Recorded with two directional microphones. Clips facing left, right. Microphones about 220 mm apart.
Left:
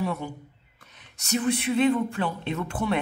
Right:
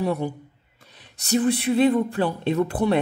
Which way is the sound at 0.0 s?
35° right (ahead or behind).